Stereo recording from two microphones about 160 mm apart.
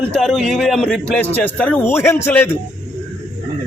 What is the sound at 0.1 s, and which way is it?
A man's voice, centre (ahead or behind).